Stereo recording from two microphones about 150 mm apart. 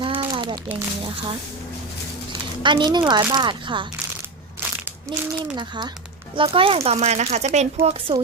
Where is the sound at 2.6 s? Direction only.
30° right (ahead or behind).